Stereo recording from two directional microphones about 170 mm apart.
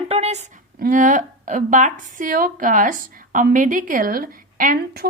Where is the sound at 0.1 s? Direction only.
40° right (ahead or behind).